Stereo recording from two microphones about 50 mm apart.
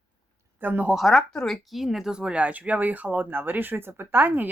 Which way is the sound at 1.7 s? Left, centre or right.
Centre.